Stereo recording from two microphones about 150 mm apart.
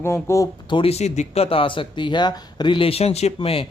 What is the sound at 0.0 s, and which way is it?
Speech, 20° left (ahead or behind).